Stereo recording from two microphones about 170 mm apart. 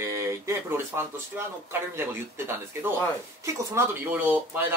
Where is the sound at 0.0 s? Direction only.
15° right (ahead or behind).